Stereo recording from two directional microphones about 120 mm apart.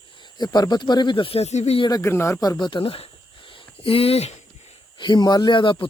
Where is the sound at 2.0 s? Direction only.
20° left (ahead or behind); by 3.0 s 50° left (ahead or behind).